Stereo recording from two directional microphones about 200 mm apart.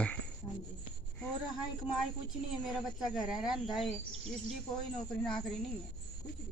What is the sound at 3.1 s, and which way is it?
Speech, centre (ahead or behind).